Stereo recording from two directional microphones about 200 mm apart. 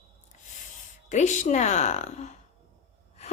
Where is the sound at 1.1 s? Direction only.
35° left (ahead or behind).